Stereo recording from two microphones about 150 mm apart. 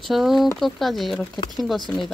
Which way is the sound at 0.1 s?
Centre (ahead or behind).